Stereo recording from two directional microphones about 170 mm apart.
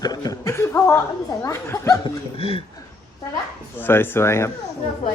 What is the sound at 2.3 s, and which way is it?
Speech, 35° left (ahead or behind).